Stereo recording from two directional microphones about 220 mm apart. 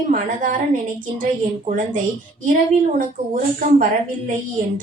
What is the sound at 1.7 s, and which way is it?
Speech, 40° right (ahead or behind).